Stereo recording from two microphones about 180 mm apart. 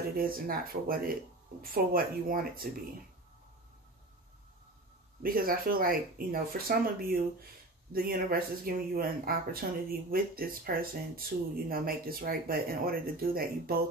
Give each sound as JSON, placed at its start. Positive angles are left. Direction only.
{"t": 0.2, "sound": "speech", "side_deg": -55}
{"t": 5.2, "sound": "speech", "side_deg": -55}